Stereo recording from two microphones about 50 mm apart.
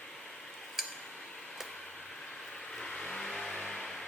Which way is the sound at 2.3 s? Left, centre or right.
Centre.